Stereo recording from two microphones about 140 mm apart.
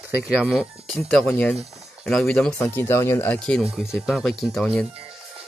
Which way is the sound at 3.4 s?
Centre (ahead or behind).